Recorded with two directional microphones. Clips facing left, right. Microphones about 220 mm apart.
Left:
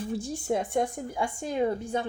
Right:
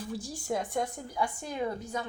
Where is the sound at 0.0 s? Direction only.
25° left (ahead or behind).